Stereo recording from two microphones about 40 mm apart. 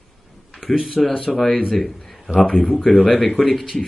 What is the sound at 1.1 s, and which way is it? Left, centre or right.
A man's voice, centre.